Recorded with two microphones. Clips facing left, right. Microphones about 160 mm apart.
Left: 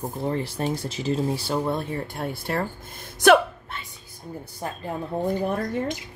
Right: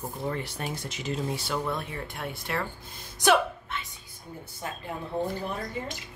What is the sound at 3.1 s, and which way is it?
Speech, 60° left (ahead or behind).